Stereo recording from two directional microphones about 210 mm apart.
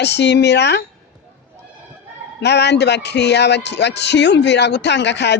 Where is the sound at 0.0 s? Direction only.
55° left (ahead or behind).